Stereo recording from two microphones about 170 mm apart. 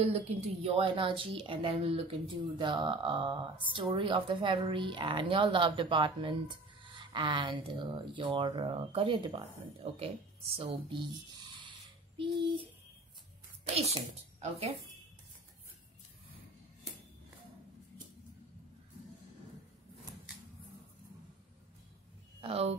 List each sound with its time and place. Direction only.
0.0 s a woman's voice: 40° right (ahead or behind)
13.7 s a woman's voice: 40° right (ahead or behind)
22.4 s a woman's voice: 35° right (ahead or behind)